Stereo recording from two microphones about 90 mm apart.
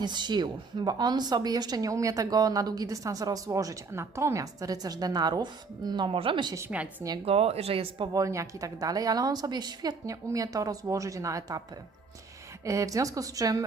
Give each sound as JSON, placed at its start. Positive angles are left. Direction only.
{"t": 0.0, "sound": "a woman's voice", "side_deg": -55}
{"t": 6.1, "sound": "a woman's voice", "side_deg": -85}
{"t": 6.7, "sound": "a woman's voice", "side_deg": -15}
{"t": 7.3, "sound": "speech", "side_deg": -90}
{"t": 8.1, "sound": "a woman's voice", "side_deg": -35}
{"t": 10.1, "sound": "a woman's voice", "side_deg": -40}
{"t": 12.6, "sound": "a woman's voice", "side_deg": -35}